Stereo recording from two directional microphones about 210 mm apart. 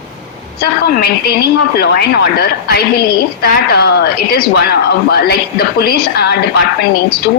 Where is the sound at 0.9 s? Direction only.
50° left (ahead or behind).